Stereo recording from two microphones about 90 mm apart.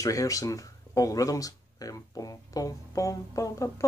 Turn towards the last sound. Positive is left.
turn(degrees=40)  # may be behind; listen again after turning